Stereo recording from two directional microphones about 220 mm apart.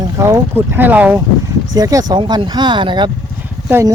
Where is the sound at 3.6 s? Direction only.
10° right (ahead or behind).